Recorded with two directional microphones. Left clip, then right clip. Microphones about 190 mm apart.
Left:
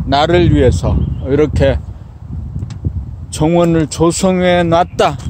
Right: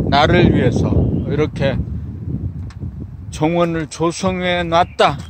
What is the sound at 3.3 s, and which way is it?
Speech, 25° left (ahead or behind).